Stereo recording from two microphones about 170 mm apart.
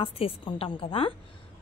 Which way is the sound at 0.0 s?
30° left (ahead or behind).